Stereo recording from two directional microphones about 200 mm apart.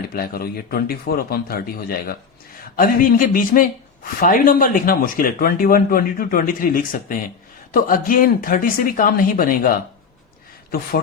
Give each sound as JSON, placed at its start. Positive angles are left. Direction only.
{"t": 0.1, "sound": "speech", "side_deg": 50}